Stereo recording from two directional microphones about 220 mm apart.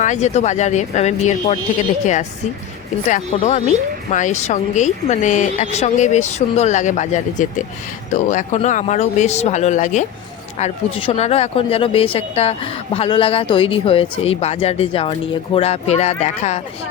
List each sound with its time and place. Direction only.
0.0 s a woman's voice: 30° left (ahead or behind)
3.3 s a woman's voice: 30° left (ahead or behind)